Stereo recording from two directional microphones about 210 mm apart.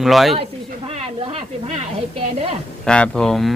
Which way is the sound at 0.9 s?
25° right (ahead or behind).